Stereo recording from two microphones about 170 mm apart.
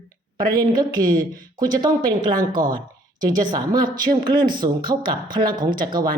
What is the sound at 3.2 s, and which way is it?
Speech, 25° right (ahead or behind).